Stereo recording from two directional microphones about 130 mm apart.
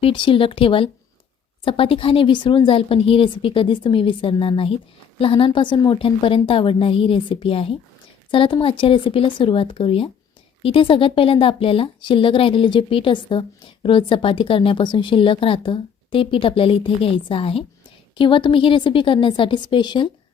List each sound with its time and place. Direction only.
0.0 s a woman's voice: 40° left (ahead or behind)